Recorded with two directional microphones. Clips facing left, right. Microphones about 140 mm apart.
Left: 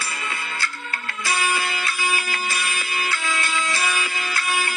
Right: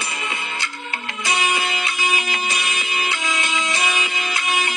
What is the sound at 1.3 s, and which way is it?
Music, 20° right (ahead or behind).